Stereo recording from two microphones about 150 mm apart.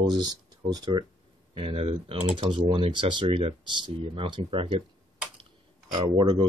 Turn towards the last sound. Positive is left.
turn(degrees=-35)  # may be behind; listen again after turning